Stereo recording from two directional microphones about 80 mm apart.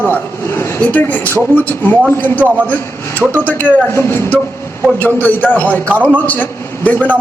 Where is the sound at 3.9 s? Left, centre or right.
Left.